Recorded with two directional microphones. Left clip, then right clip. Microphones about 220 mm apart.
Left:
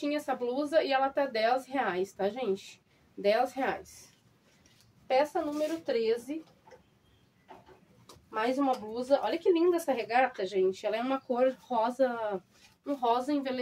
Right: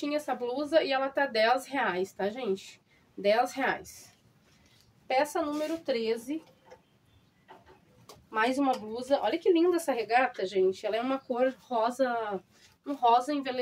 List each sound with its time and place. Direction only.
0.0 s speech: 15° right (ahead or behind)
5.6 s speech: 20° right (ahead or behind)
8.3 s speech: 20° right (ahead or behind)